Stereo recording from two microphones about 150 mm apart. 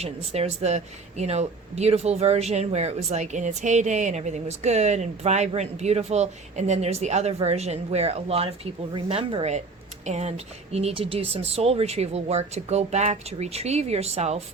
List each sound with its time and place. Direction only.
0.0 s speech: 45° right (ahead or behind)